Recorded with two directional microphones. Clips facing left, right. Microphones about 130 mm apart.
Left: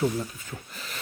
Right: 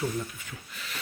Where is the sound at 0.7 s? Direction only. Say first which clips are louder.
Left 2 dB; 40° left (ahead or behind).